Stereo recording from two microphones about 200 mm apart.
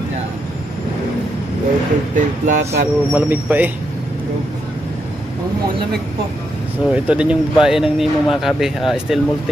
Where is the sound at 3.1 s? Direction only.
10° right (ahead or behind).